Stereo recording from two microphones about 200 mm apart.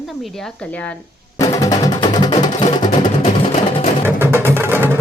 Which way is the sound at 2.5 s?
30° left (ahead or behind).